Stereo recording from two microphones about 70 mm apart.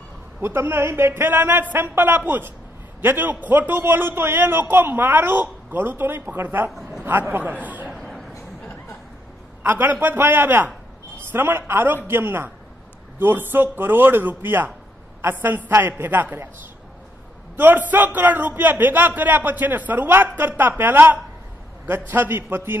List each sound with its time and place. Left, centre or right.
0.4 s a man's voice: right
6.7 s a man's voice: centre
7.1 s a man's voice: right
7.6 s a sound: right
8.0 s a sound: centre
9.6 s a man's voice: right
17.6 s a man's voice: right